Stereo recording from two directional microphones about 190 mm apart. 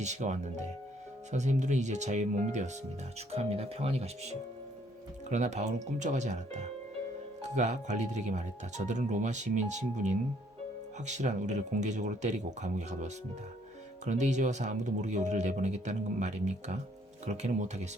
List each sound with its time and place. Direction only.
0.0 s speech: 40° right (ahead or behind)